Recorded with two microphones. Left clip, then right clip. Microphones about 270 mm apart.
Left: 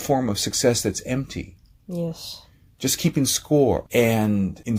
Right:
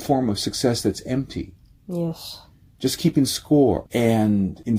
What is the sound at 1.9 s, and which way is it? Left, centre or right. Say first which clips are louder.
Speech: right 2 dB; centre.